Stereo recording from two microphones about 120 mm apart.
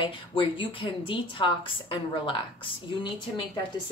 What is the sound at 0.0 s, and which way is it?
A woman's voice, 45° left (ahead or behind).